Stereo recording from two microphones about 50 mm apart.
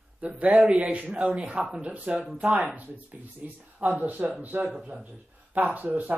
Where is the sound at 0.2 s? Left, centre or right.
Right.